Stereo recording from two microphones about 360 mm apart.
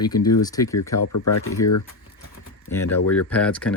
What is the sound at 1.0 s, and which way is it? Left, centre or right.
Speech, left.